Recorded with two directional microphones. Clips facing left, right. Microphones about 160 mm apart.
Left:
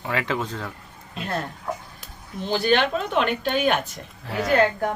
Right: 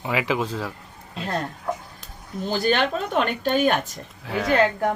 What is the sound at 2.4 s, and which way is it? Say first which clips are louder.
A woman's voice: left 1 dB; 40° right (ahead or behind).